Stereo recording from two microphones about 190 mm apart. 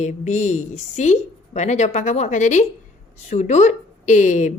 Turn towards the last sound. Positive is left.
turn(degrees=40)  # may be behind; listen again after turning